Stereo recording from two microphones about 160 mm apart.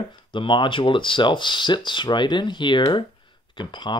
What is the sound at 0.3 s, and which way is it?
Speech, 30° left (ahead or behind).